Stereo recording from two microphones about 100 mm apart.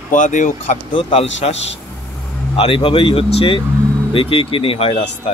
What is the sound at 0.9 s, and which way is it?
Speech, 65° left (ahead or behind).